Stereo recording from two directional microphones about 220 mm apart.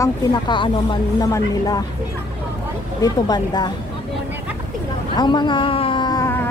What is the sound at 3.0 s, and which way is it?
Speech, 20° left (ahead or behind).